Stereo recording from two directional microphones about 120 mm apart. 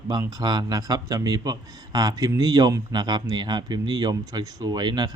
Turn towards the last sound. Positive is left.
turn(degrees=-35)  # may be behind; listen again after turning